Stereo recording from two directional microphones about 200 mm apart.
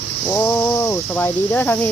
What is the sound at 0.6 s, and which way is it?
Speech, 15° left (ahead or behind).